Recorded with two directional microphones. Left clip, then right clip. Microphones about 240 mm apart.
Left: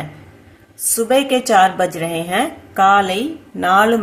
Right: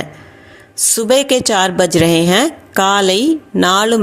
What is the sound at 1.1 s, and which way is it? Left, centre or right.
Speech, right.